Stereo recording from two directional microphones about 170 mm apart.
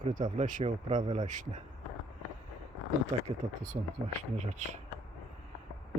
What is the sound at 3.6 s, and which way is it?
Speech, 40° right (ahead or behind).